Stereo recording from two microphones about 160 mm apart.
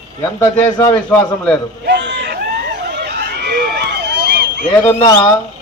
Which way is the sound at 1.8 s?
90° right.